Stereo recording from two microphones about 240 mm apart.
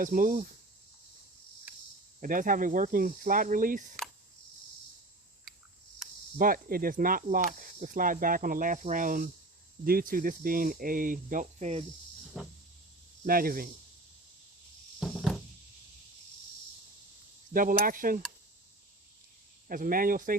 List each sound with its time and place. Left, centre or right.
0.0 s speech: right
2.2 s speech: right
6.4 s speech: right
12.4 s power windows: centre
13.2 s speech: right
15.0 s music: centre
17.5 s speech: right
19.6 s speech: right